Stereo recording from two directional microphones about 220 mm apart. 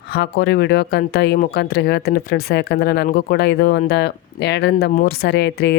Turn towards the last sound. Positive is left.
turn(degrees=50)  # may be behind; listen again after turning